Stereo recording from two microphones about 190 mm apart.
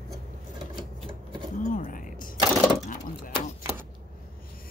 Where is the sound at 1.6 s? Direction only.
45° left (ahead or behind).